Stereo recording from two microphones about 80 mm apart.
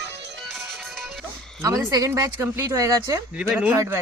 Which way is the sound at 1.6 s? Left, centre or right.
Right.